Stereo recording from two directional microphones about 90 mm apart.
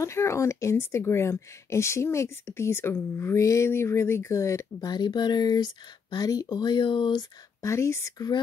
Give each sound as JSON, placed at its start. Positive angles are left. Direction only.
{"t": 0.0, "sound": "speech", "side_deg": 30}
{"t": 4.7, "sound": "speech", "side_deg": 55}
{"t": 7.6, "sound": "speech", "side_deg": 30}